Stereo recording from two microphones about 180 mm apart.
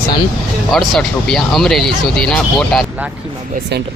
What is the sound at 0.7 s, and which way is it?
Speech, centre (ahead or behind).